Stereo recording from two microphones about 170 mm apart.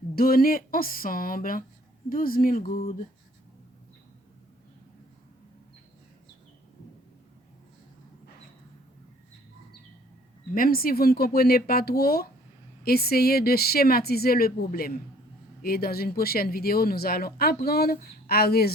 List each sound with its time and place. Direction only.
0.2 s speech: 60° left (ahead or behind)
10.5 s speech: 60° left (ahead or behind)